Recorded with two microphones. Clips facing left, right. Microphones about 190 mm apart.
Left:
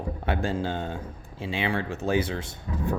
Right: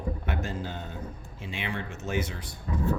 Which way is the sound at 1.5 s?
90° left.